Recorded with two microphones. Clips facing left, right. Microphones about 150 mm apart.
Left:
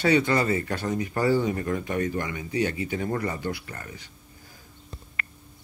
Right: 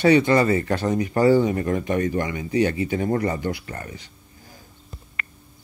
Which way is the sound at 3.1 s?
45° right (ahead or behind).